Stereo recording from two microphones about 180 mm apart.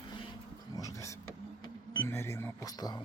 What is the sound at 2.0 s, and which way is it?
Music, 15° left (ahead or behind).